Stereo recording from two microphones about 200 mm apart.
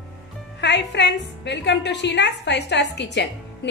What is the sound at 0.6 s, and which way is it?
A woman's voice, 60° left (ahead or behind).